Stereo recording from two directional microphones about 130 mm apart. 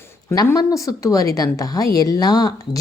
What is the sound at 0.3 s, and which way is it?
A woman's voice, 25° left (ahead or behind).